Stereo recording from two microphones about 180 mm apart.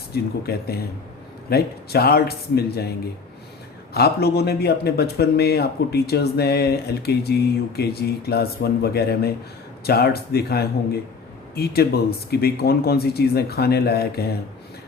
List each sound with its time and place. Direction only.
0.1 s speech: 60° left (ahead or behind)
3.9 s speech: 60° left (ahead or behind)